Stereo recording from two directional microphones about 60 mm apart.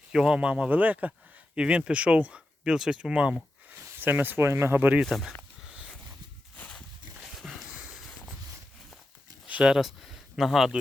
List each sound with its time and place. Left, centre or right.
0.1 s speech: centre
1.5 s speech: centre
3.8 s speech: right
5.1 s a sound: centre
7.3 s dog: centre
7.5 s dog: centre
7.9 s a sound: centre
9.6 s speech: centre